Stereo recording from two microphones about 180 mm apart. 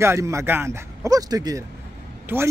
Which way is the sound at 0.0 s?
15° right (ahead or behind).